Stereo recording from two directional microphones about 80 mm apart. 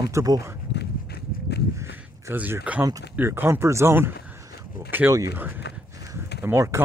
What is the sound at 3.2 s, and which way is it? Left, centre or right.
Speech, right.